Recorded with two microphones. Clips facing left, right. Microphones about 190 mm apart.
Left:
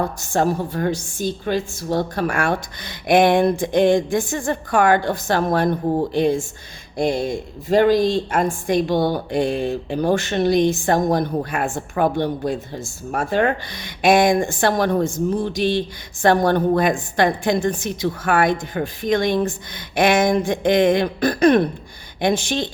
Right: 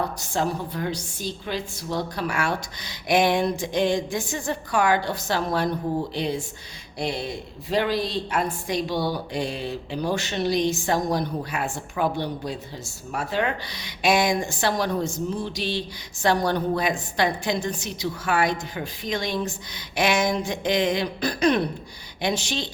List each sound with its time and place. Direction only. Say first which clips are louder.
0.2 s speech: left 6 dB; 50° left (ahead or behind)